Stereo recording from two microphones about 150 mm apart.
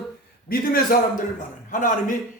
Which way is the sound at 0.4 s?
75° left (ahead or behind).